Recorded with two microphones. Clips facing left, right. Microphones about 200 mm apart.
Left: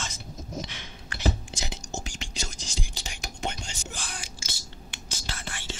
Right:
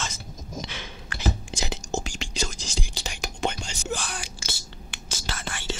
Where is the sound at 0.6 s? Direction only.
90° right.